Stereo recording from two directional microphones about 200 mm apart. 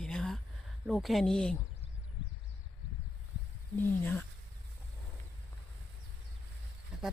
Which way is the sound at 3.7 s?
10° left (ahead or behind).